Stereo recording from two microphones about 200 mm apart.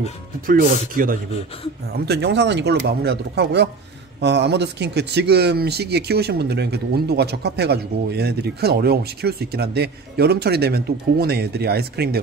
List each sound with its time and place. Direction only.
0.5 s speech: 45° right (ahead or behind)
2.0 s speech: 55° right (ahead or behind)